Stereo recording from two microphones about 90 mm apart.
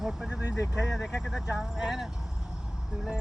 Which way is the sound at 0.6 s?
35° left (ahead or behind).